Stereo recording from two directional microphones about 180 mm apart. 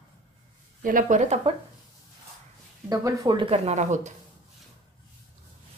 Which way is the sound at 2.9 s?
20° right (ahead or behind).